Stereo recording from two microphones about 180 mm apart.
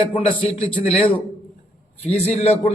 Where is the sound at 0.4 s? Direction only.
35° left (ahead or behind).